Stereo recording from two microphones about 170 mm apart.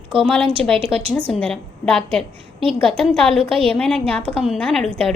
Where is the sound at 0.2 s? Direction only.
5° left (ahead or behind).